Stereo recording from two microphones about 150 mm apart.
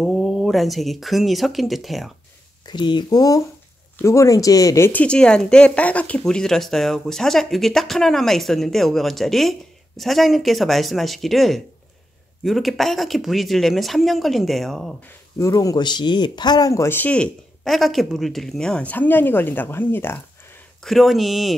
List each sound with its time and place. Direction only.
0.0 s speech: centre (ahead or behind)
2.6 s speech: 30° left (ahead or behind); by 15.0 s centre (ahead or behind)
15.0 s speech: 20° left (ahead or behind)
20.8 s speech: centre (ahead or behind)